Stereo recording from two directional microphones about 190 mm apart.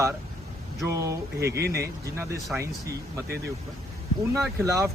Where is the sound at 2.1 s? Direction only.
15° right (ahead or behind).